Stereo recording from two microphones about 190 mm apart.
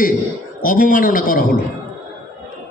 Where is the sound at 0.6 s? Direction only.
45° left (ahead or behind).